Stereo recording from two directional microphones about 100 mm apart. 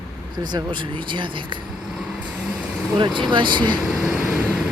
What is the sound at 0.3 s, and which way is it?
Speech, 45° right (ahead or behind).